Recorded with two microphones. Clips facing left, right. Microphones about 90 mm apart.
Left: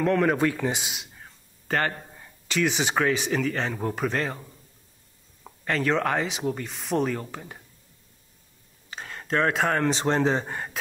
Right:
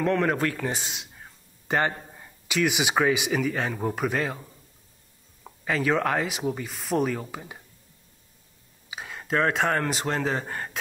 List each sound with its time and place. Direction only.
0.0 s speech: centre (ahead or behind)
1.7 s speech: 15° right (ahead or behind)
8.9 s speech: 5° right (ahead or behind)
10.0 s speech: 25° left (ahead or behind)
10.4 s speech: 5° left (ahead or behind)